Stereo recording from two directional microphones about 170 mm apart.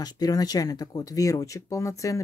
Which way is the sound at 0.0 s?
20° left (ahead or behind).